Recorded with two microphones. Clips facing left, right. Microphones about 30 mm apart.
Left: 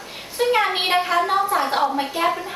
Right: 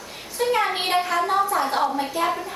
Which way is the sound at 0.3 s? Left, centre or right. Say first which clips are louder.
Left 3 dB; left.